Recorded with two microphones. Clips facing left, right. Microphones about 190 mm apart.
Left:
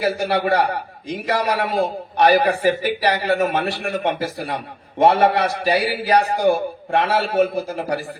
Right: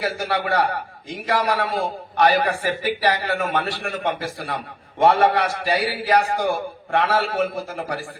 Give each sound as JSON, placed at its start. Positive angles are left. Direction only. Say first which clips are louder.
{"t": 0.0, "sound": "a man's voice", "louder": "left 4 dB", "side_deg": 20}